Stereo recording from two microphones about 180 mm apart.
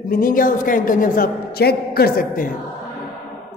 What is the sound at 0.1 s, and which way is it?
A man's voice, 50° left (ahead or behind).